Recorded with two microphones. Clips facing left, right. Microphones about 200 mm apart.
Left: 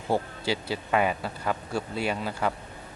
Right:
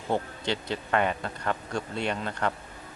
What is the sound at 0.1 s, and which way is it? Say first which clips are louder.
A man's voice: left 2 dB; 5° left (ahead or behind).